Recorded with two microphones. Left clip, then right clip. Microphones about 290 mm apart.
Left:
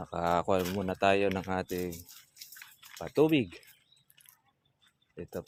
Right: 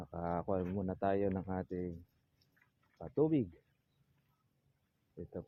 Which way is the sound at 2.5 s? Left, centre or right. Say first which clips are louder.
Left 10 dB; left.